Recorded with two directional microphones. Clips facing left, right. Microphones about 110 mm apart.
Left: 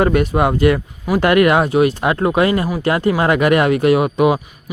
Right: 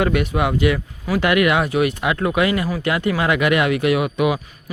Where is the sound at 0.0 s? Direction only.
40° left (ahead or behind).